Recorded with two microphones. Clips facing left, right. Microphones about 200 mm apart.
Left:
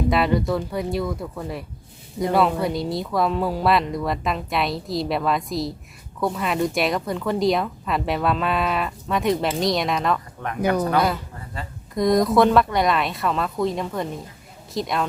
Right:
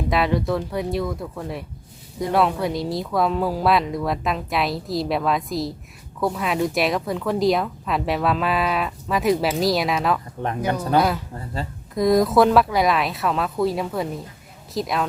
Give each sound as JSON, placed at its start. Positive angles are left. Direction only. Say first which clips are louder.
{"t": 0.1, "sound": "speech", "louder": "right 3 dB", "side_deg": 0}
{"t": 10.4, "sound": "speech", "louder": "right 4 dB", "side_deg": -30}
{"t": 11.6, "sound": "speech", "louder": "right 5 dB", "side_deg": -30}
{"t": 11.9, "sound": "speech", "louder": "right 1 dB", "side_deg": 0}